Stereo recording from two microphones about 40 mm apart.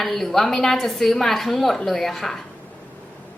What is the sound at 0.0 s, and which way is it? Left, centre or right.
A woman's voice, centre.